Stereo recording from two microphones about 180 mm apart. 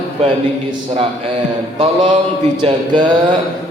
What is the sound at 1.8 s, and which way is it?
Speech, 40° right (ahead or behind).